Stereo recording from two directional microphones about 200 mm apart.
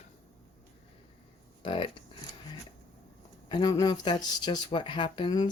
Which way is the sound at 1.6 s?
25° left (ahead or behind).